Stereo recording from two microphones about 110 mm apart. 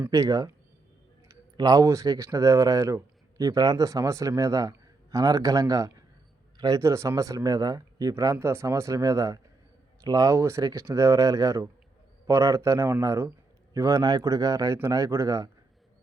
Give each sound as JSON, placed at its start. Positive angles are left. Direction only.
{"t": 0.1, "sound": "speech", "side_deg": -30}
{"t": 1.5, "sound": "speech", "side_deg": -35}